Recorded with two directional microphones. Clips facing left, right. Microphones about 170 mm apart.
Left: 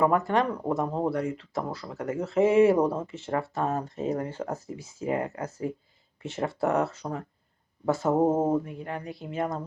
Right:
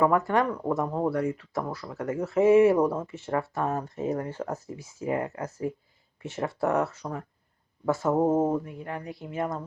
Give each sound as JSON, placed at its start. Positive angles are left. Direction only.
{"t": 0.0, "sound": "speech", "side_deg": 25}